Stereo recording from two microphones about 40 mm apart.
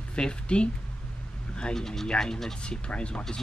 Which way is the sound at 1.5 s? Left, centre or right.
Left.